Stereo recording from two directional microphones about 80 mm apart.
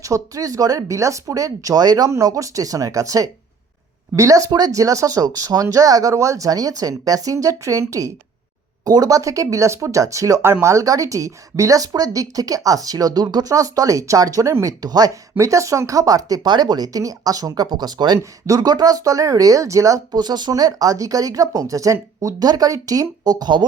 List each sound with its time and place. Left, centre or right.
0.0 s speech: right
2.0 s speech: right
8.8 s speech: right
15.4 s speech: right
18.2 s speech: right